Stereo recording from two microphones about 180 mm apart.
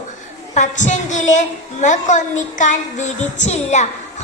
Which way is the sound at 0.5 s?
40° left (ahead or behind).